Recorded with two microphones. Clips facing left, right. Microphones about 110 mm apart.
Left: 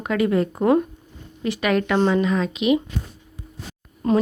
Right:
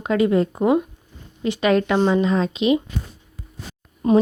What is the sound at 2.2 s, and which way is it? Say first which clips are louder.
Speech: right 2 dB; 30° right (ahead or behind).